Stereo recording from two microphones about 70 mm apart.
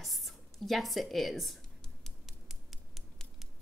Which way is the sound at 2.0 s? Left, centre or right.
Centre.